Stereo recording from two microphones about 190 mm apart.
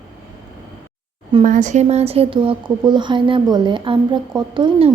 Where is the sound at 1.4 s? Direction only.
40° right (ahead or behind); by 4.9 s 25° right (ahead or behind).